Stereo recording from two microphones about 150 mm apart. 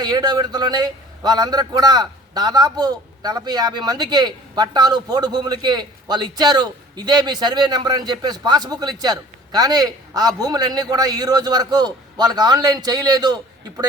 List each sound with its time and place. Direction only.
0.0 s a man's voice: 25° right (ahead or behind)